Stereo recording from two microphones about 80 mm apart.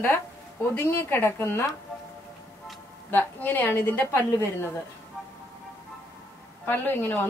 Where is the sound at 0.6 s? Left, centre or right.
Left.